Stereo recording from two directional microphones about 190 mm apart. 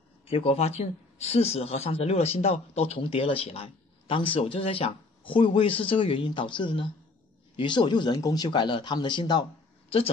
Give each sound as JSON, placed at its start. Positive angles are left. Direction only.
{"t": 0.3, "sound": "a man's voice", "side_deg": 30}